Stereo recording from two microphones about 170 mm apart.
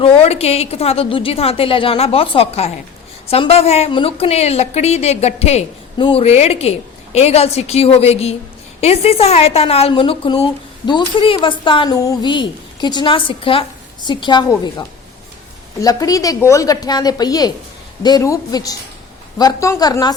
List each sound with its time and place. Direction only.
0.0 s a woman's voice: 35° left (ahead or behind)
6.0 s a woman's voice: 25° left (ahead or behind)
6.2 s a woman's voice: 40° left (ahead or behind); by 20.1 s 25° left (ahead or behind)